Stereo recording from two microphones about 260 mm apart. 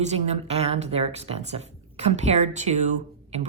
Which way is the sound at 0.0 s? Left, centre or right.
Right.